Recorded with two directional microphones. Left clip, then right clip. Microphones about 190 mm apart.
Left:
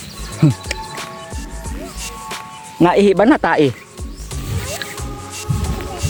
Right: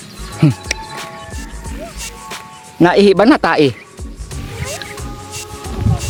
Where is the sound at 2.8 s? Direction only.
15° right (ahead or behind).